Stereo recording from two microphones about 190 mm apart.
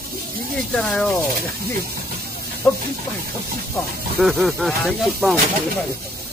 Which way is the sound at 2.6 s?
5° left (ahead or behind).